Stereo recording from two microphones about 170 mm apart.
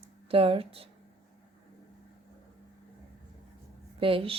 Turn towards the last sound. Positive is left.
turn(degrees=-35)  # may be behind; listen again after turning